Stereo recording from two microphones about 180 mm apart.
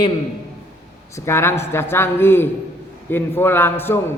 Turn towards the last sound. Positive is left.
turn(degrees=15)  # may be behind; listen again after turning